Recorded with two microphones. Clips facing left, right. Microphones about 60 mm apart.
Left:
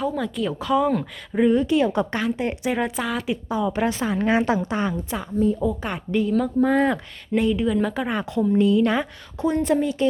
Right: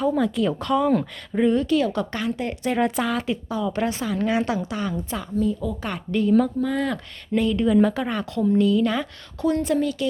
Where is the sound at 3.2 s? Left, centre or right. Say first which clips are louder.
Left 1 dB; centre.